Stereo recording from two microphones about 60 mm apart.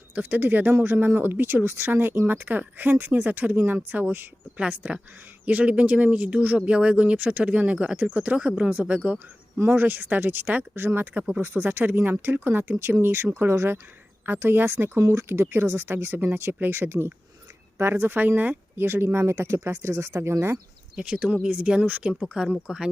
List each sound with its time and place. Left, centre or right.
0.1 s speech: right
4.6 s speech: centre; by 15.0 s right
15.0 s a woman's voice: right
18.2 s speech: right
20.9 s speech: centre
22.6 s speech: centre